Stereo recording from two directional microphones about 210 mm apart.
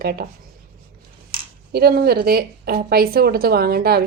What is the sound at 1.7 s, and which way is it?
A woman's voice, 50° right (ahead or behind).